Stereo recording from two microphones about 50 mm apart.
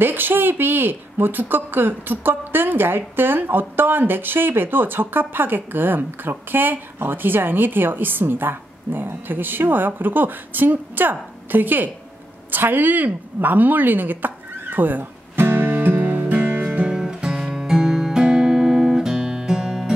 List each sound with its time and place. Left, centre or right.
0.0 s a woman's voice: right
15.4 s music: right
16.8 s guitar: centre